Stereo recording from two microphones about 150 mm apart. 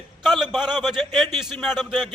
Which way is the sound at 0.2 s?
Centre (ahead or behind).